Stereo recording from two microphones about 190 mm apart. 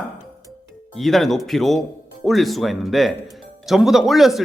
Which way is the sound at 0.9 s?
Centre (ahead or behind).